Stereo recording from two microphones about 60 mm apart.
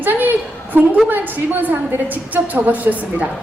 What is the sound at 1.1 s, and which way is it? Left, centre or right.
A woman's voice, right.